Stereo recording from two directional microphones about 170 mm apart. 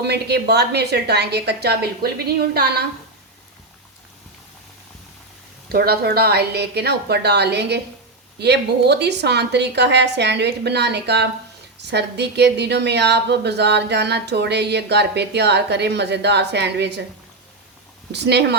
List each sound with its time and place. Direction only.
0.0 s a woman's voice: 75° right (ahead or behind)
5.6 s a woman's voice: 65° right (ahead or behind); by 17.0 s 85° right
18.1 s a woman's voice: 80° right